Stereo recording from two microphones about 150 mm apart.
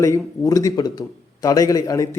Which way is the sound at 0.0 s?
20° left (ahead or behind).